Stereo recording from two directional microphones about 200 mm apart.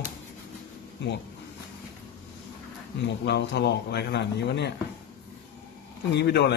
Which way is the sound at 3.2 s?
60° left (ahead or behind).